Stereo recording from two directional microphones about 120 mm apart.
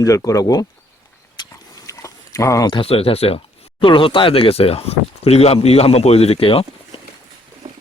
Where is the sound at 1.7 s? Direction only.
25° left (ahead or behind).